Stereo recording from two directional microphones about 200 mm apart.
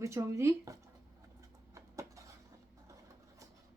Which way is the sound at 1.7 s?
15° right (ahead or behind).